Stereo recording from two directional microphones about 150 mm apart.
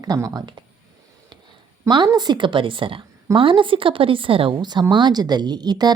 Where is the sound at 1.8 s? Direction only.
30° right (ahead or behind).